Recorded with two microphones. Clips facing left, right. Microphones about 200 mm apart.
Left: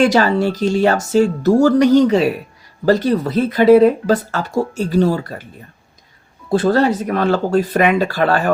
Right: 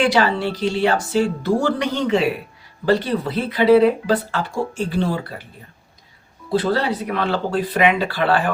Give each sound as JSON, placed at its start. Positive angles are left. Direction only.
{"t": 0.0, "sound": "speech", "side_deg": 45}
{"t": 6.5, "sound": "speech", "side_deg": 45}